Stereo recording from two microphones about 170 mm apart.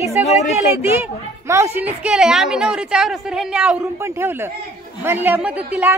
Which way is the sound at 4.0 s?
15° right (ahead or behind).